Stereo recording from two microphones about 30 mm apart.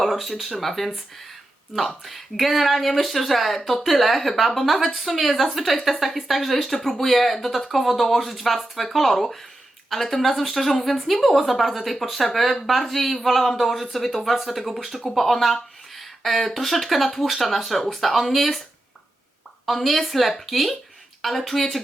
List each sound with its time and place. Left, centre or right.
0.0 s a woman's voice: centre
15.0 s a woman's voice: centre
19.6 s a woman's voice: centre